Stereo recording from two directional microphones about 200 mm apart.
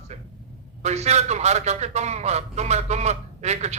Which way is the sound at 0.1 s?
35° right (ahead or behind).